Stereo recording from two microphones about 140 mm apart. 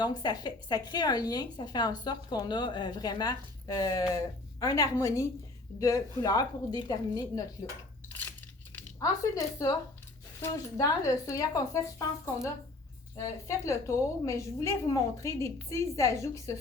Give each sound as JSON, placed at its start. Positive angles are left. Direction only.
{"t": 0.0, "sound": "a woman's voice", "side_deg": 30}
{"t": 9.0, "sound": "a woman's voice", "side_deg": 25}
{"t": 13.5, "sound": "a woman's voice", "side_deg": 20}